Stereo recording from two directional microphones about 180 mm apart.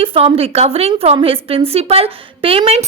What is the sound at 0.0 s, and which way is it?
A woman's voice, 30° right (ahead or behind).